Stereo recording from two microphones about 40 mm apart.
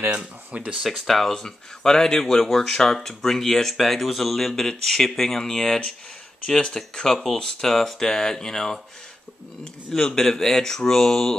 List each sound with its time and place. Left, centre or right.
0.1 s speech: right
0.8 s speech: centre
9.8 s speech: centre